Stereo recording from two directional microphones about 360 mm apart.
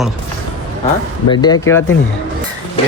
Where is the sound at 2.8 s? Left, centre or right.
Centre.